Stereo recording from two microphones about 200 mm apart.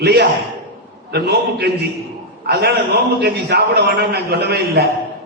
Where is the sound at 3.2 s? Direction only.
55° right (ahead or behind).